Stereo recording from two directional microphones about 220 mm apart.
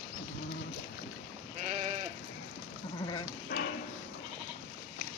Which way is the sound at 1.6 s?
30° right (ahead or behind).